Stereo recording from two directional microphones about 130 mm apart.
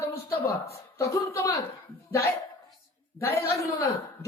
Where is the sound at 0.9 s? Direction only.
20° left (ahead or behind).